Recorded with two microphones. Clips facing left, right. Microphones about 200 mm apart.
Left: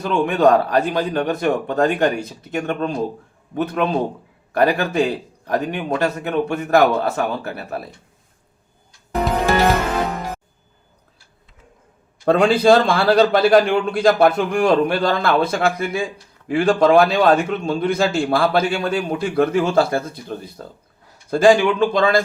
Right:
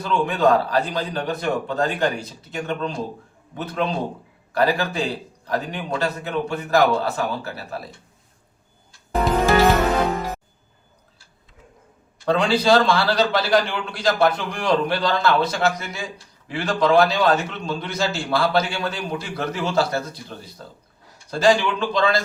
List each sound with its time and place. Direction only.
0.0 s a man's voice: 50° left (ahead or behind)
12.2 s a man's voice: 50° left (ahead or behind)